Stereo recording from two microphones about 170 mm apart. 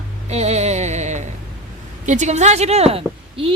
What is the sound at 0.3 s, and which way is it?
Music, 40° right (ahead or behind).